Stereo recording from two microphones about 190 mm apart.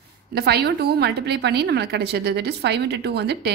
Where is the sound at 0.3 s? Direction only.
60° right (ahead or behind).